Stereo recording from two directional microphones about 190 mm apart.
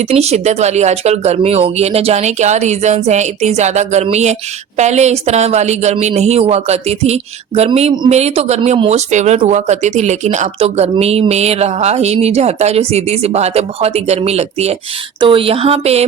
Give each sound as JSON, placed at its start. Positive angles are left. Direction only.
{"t": 0.0, "sound": "a woman's voice", "side_deg": -35}